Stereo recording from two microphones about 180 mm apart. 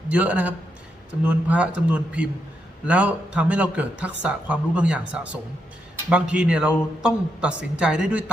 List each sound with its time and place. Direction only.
0.1 s speech: 10° right (ahead or behind)